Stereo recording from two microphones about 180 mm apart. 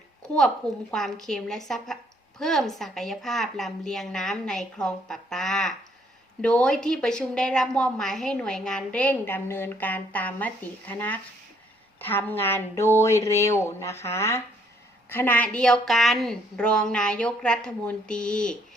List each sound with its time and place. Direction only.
0.3 s a woman's voice: 5° left (ahead or behind)